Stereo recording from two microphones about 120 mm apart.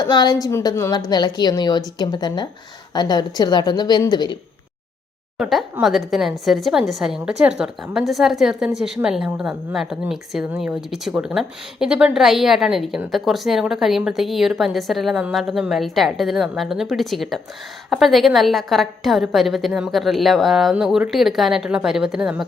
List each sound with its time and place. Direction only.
0.0 s a woman's voice: 35° left (ahead or behind)
5.4 s a woman's voice: centre (ahead or behind)